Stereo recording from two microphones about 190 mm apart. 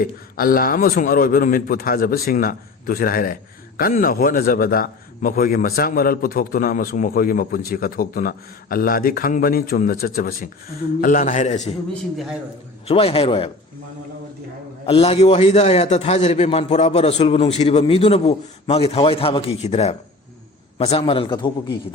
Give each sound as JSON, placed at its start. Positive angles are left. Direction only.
{"t": 0.0, "sound": "a man's voice", "side_deg": 50}
{"t": 12.1, "sound": "a man's voice", "side_deg": 0}
{"t": 12.9, "sound": "a man's voice", "side_deg": 30}
{"t": 14.8, "sound": "a man's voice", "side_deg": 30}